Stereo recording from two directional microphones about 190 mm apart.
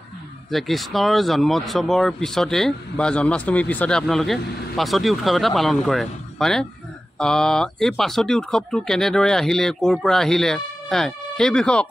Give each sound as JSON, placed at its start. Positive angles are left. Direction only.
{"t": 0.5, "sound": "speech", "side_deg": 0}